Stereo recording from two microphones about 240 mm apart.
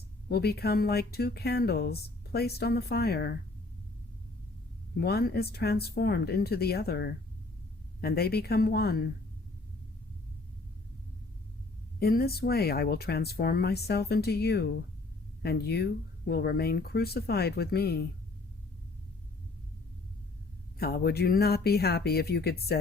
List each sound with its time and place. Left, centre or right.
0.3 s speech: left
4.9 s speech: left
11.9 s speech: left
20.7 s speech: left